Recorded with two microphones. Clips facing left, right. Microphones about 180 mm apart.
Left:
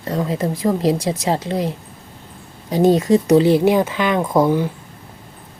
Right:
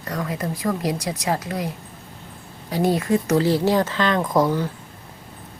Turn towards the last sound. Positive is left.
turn(degrees=20)  # may be behind; listen again after turning